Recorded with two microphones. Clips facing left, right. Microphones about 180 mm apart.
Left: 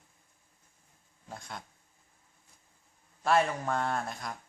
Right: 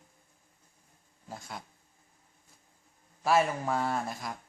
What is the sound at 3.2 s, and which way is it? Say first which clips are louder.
Speech: right 1 dB; 5° right (ahead or behind).